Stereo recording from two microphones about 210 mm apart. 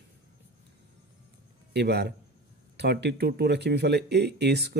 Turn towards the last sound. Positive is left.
turn(degrees=-50)  # may be behind; listen again after turning